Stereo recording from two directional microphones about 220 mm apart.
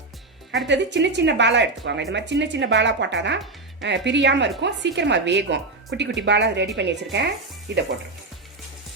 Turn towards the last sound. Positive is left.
turn(degrees=-50)  # may be behind; listen again after turning